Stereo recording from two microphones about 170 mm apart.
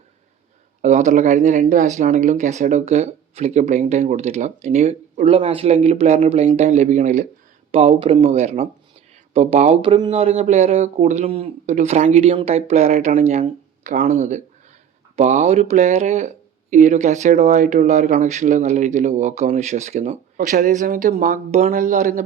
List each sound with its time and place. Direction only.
0.8 s speech: 45° right (ahead or behind)
11.3 s speech: 35° right (ahead or behind)
13.9 s speech: 55° right (ahead or behind)